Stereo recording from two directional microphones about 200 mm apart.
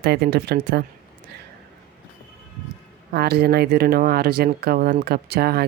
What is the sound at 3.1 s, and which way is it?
Speech, 55° right (ahead or behind).